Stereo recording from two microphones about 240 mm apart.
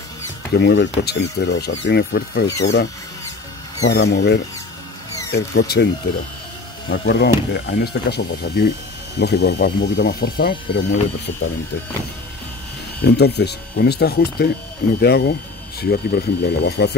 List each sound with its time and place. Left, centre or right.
0.6 s speech: left
6.9 s speech: left
13.0 s speech: left